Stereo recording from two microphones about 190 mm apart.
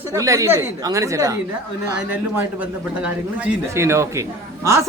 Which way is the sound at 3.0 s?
10° right (ahead or behind).